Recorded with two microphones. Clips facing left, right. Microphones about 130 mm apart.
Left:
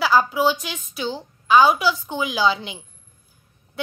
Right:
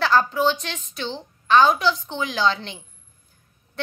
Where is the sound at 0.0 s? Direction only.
10° left (ahead or behind).